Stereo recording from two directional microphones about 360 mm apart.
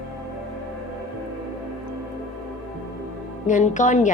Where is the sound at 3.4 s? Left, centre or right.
Left.